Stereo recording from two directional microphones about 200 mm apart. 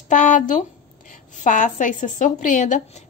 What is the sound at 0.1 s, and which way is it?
A woman's voice, 40° left (ahead or behind).